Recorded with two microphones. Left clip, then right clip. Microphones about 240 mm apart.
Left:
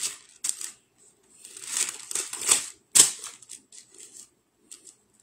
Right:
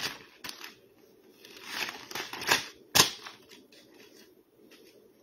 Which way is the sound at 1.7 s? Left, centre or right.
Centre.